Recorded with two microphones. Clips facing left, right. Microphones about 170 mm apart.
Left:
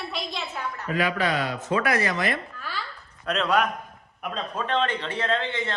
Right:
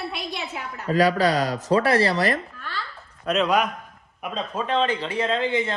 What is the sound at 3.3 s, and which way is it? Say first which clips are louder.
A man's voice: right 2 dB; 10° right (ahead or behind).